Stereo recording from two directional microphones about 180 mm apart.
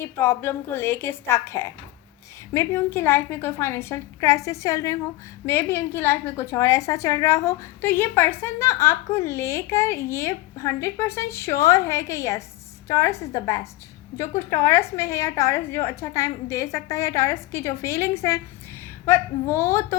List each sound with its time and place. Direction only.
0.0 s a woman's voice: 15° left (ahead or behind)